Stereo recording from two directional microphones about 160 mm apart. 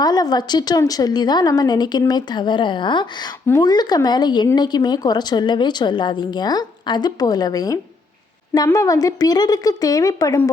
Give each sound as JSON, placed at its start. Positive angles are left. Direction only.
{"t": 0.0, "sound": "a woman's voice", "side_deg": 25}